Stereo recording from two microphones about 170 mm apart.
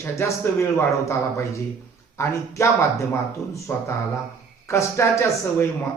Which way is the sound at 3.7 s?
15° left (ahead or behind).